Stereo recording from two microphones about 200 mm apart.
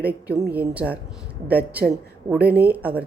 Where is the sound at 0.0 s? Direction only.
10° right (ahead or behind).